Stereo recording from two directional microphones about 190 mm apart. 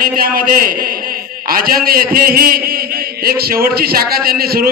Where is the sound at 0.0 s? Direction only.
50° right (ahead or behind).